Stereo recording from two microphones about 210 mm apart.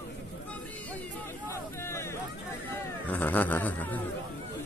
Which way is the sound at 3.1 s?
10° left (ahead or behind).